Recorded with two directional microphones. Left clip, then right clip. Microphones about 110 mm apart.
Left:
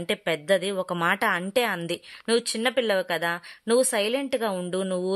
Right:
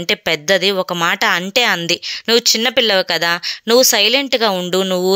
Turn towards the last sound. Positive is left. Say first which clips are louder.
# right 12 dB
turn(degrees=-30)  # may be behind; listen again after turning